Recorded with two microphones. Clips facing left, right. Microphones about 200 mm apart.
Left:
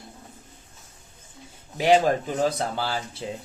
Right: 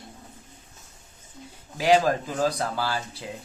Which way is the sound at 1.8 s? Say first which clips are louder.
Left 1 dB; 25° left (ahead or behind).